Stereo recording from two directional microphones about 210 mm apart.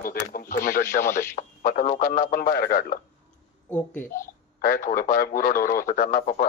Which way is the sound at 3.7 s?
10° left (ahead or behind).